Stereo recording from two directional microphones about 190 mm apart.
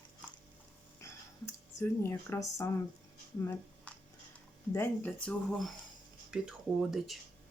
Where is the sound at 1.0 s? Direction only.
15° left (ahead or behind).